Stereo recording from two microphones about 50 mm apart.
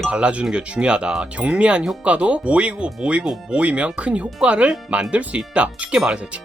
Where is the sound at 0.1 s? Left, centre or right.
Right.